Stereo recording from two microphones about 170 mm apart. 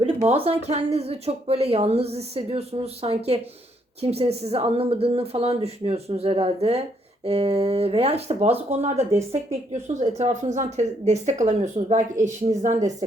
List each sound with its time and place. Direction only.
0.2 s speech: 40° right (ahead or behind)